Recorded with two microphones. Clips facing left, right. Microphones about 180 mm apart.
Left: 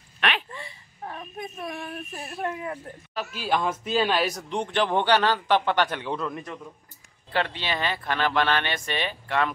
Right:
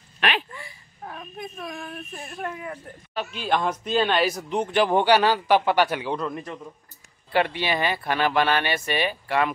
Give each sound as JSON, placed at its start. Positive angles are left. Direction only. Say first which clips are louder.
{"t": 0.5, "sound": "a sound", "louder": "left 2 dB", "side_deg": 25}
{"t": 2.2, "sound": "speech", "louder": "left 3 dB", "side_deg": 25}
{"t": 3.3, "sound": "a man's voice", "louder": "right 1 dB", "side_deg": 5}
{"t": 7.3, "sound": "speech", "louder": "right 4 dB", "side_deg": -10}